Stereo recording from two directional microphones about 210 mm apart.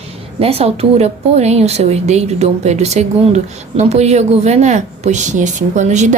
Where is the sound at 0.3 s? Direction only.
30° right (ahead or behind).